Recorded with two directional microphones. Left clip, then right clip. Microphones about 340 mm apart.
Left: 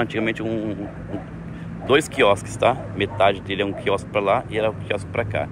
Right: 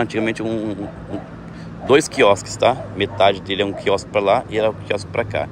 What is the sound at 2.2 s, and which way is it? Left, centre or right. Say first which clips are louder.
Speech: right 3 dB; centre.